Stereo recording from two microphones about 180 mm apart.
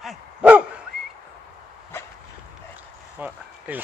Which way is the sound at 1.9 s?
10° left (ahead or behind).